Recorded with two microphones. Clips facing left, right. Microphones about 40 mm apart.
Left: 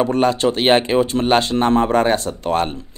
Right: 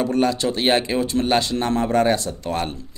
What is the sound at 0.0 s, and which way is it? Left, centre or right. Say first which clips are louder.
Speech: left 4 dB; left.